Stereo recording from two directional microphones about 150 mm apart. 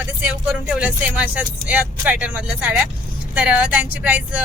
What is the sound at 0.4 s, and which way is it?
Speech, 5° right (ahead or behind).